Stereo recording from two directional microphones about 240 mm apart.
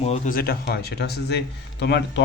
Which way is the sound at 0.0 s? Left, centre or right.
Left.